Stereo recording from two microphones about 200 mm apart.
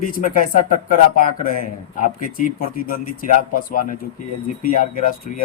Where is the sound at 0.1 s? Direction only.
45° left (ahead or behind).